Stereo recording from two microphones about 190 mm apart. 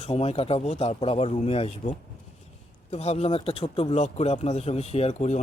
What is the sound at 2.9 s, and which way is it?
Speech, 35° left (ahead or behind).